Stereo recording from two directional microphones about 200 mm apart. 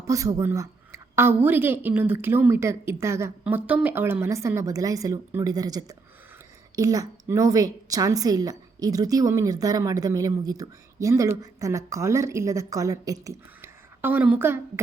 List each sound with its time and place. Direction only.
0.1 s a woman's voice: 15° right (ahead or behind)